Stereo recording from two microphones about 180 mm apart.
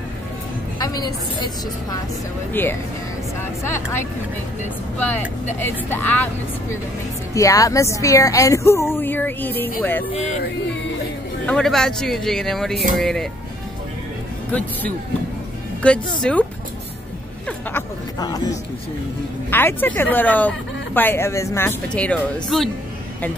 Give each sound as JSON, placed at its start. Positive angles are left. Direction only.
{"t": 0.7, "sound": "a woman's voice", "side_deg": 20}
{"t": 2.6, "sound": "speech", "side_deg": 10}
{"t": 7.3, "sound": "speech", "side_deg": 20}
{"t": 10.1, "sound": "speech", "side_deg": 35}
{"t": 11.4, "sound": "speech", "side_deg": 5}
{"t": 14.5, "sound": "speech", "side_deg": 10}
{"t": 17.5, "sound": "speech", "side_deg": 10}
{"t": 19.5, "sound": "speech", "side_deg": 10}